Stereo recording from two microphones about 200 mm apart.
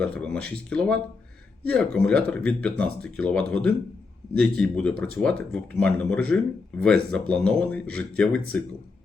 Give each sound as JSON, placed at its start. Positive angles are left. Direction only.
{"t": 0.0, "sound": "speech", "side_deg": 5}